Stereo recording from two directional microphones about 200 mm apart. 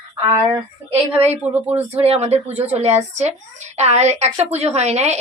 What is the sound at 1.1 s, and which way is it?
A woman's voice, 35° right (ahead or behind).